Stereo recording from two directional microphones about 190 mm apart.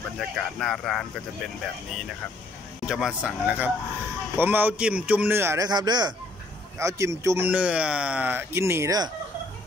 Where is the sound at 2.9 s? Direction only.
5° right (ahead or behind).